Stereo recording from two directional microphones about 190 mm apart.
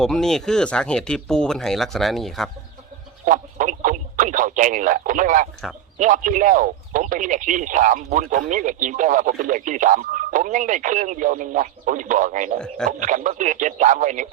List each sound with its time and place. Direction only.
0.0 s speech: 5° left (ahead or behind)
3.2 s a sound: 40° right (ahead or behind)
6.0 s speech: 45° right (ahead or behind)
12.5 s speech: 5° left (ahead or behind)
13.0 s a man's voice: 40° right (ahead or behind)